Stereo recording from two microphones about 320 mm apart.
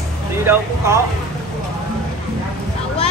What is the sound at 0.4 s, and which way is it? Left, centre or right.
Speech, centre.